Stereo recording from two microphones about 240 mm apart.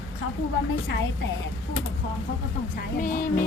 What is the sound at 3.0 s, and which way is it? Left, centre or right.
Speech, left.